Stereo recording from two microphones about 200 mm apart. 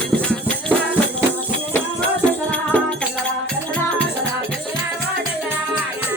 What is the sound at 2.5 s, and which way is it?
Music, 5° left (ahead or behind).